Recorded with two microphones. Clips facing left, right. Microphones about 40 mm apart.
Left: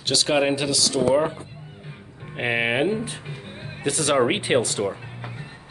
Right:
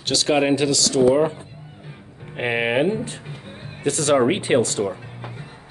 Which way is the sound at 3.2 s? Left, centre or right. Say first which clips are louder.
Left 1 dB; left.